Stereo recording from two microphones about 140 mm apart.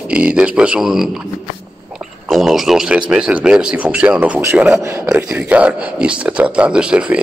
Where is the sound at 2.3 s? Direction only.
Centre (ahead or behind).